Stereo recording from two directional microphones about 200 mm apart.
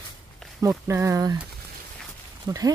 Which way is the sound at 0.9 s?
15° right (ahead or behind).